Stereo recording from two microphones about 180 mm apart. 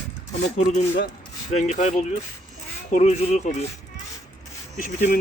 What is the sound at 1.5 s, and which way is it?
Speech, 40° left (ahead or behind).